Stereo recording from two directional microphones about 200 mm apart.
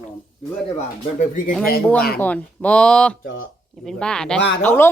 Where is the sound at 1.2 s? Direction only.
40° left (ahead or behind).